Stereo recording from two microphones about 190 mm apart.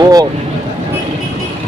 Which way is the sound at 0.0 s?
20° right (ahead or behind).